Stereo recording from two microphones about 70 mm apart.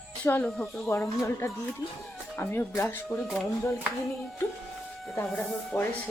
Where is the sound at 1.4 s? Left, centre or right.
Left.